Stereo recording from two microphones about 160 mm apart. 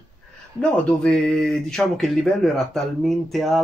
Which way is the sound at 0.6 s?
5° left (ahead or behind).